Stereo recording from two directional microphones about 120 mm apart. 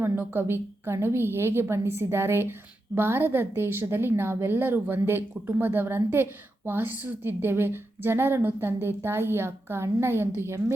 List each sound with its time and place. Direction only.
0.0 s a woman's voice: 20° right (ahead or behind)